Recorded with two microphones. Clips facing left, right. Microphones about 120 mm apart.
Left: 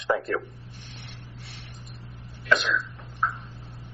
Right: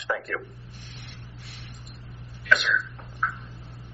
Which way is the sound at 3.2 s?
35° left (ahead or behind).